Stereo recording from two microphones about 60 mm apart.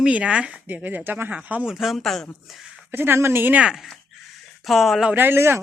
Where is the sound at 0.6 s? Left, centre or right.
Right.